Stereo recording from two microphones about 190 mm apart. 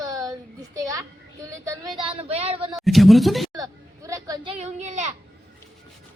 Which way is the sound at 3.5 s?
20° right (ahead or behind).